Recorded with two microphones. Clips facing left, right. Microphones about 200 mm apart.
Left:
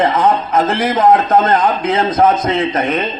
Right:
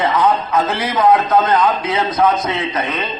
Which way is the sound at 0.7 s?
50° left (ahead or behind).